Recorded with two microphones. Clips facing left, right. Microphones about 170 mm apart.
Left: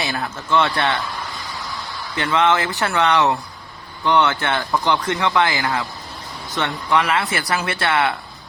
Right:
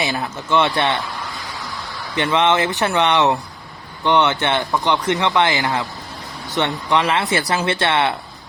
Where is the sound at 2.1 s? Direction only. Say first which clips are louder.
Right 1 dB; 20° right (ahead or behind).